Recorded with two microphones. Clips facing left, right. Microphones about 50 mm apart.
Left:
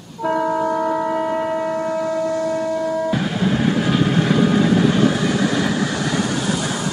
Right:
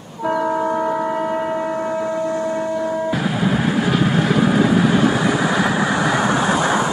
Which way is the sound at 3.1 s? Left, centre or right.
Centre.